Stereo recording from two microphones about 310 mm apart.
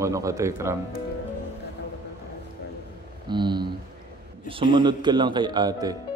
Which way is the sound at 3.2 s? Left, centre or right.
Centre.